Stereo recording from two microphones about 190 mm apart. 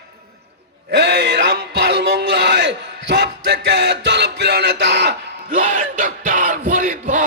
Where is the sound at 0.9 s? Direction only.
60° right (ahead or behind).